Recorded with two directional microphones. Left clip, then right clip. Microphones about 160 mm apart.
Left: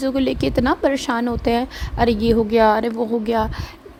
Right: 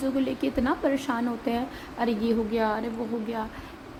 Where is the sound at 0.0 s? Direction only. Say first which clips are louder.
Left 7 dB; 70° left (ahead or behind).